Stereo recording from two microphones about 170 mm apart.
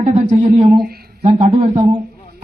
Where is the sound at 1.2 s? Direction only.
35° right (ahead or behind).